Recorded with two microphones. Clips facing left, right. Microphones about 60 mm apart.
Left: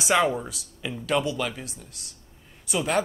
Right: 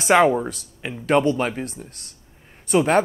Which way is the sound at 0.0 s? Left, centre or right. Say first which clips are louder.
Right 6 dB; right.